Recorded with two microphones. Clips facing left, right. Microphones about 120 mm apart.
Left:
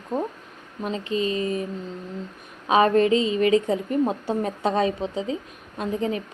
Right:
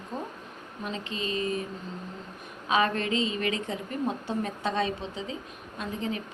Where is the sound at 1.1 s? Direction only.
30° right (ahead or behind).